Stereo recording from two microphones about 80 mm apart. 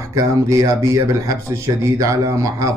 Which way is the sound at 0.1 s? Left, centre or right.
Right.